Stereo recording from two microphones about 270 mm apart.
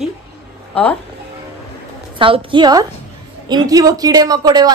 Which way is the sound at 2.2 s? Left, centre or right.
Centre.